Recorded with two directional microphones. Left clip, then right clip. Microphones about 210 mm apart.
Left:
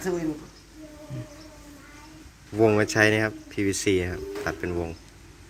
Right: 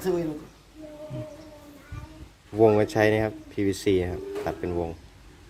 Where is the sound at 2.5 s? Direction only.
5° right (ahead or behind).